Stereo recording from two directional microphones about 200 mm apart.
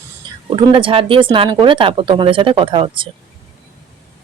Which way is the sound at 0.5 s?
25° right (ahead or behind).